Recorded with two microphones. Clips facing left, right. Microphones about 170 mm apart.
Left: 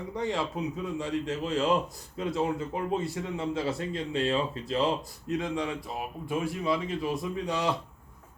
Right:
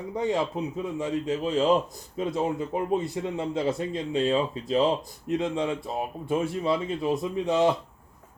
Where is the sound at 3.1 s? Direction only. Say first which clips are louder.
Right 3 dB; 25° right (ahead or behind).